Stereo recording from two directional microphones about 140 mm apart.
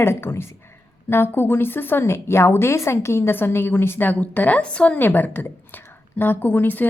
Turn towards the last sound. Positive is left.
turn(degrees=15)  # may be behind; listen again after turning